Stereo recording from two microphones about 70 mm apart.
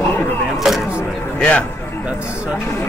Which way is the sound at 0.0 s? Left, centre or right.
Left.